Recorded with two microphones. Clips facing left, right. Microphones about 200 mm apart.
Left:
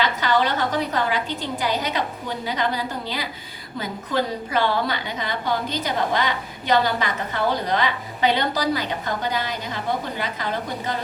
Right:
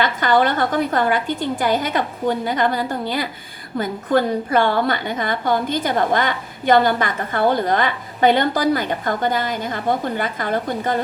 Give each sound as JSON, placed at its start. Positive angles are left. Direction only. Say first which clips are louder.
{"t": 0.0, "sound": "a woman's voice", "louder": "right 4 dB", "side_deg": -50}